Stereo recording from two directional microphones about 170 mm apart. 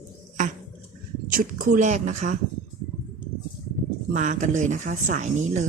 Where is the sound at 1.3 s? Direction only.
50° right (ahead or behind).